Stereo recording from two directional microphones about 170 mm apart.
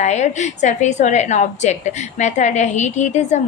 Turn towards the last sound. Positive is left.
turn(degrees=45)  # may be behind; listen again after turning